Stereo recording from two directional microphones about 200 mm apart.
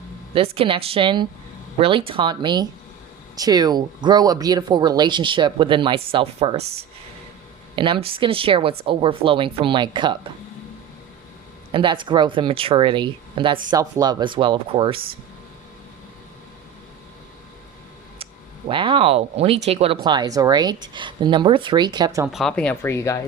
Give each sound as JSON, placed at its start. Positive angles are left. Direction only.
{"t": 0.3, "sound": "speech", "side_deg": -30}
{"t": 7.8, "sound": "speech", "side_deg": -25}
{"t": 11.7, "sound": "speech", "side_deg": -25}
{"t": 18.7, "sound": "speech", "side_deg": -25}
{"t": 22.3, "sound": "speech", "side_deg": 0}